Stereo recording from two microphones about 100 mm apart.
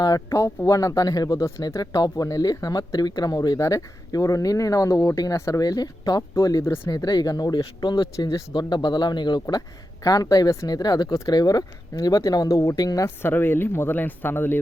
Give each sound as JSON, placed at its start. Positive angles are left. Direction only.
{"t": 0.0, "sound": "speech", "side_deg": 35}
{"t": 13.2, "sound": "speech", "side_deg": 20}